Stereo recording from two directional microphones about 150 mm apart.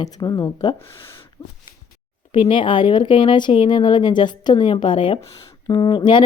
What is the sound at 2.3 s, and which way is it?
A woman's voice, 35° left (ahead or behind).